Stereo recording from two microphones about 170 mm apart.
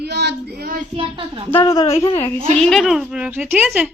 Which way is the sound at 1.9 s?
35° left (ahead or behind).